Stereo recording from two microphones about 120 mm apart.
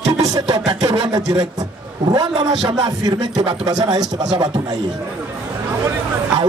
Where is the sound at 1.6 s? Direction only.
35° right (ahead or behind).